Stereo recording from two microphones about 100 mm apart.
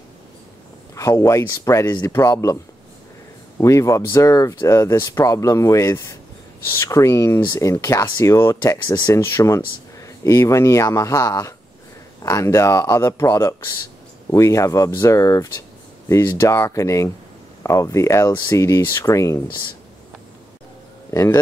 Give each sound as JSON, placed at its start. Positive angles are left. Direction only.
{"t": 0.9, "sound": "speech", "side_deg": 30}
{"t": 21.1, "sound": "speech", "side_deg": 30}